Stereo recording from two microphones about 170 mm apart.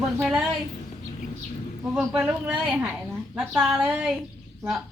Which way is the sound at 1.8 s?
5° right (ahead or behind).